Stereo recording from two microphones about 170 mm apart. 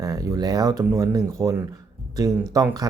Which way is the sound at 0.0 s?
20° right (ahead or behind).